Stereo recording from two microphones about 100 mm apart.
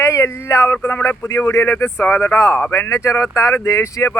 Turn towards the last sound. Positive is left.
turn(degrees=30)  # may be behind; listen again after turning